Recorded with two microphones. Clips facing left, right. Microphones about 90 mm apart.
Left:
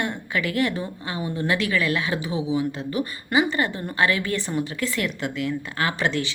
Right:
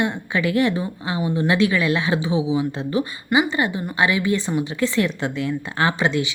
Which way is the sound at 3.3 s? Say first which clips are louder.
Right 2 dB; 20° right (ahead or behind).